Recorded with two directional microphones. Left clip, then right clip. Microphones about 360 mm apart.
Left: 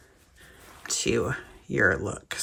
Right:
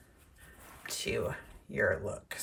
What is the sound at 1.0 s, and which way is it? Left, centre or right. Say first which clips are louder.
Speech: left 8 dB; centre.